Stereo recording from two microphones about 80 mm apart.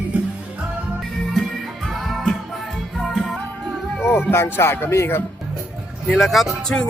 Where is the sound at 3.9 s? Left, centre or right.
Left.